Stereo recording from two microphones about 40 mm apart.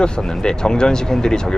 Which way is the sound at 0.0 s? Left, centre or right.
Left.